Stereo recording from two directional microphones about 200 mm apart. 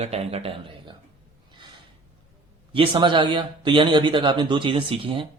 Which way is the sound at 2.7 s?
25° right (ahead or behind).